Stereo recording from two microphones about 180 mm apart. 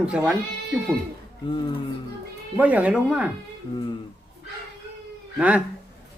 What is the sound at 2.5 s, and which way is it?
Speech, 10° right (ahead or behind).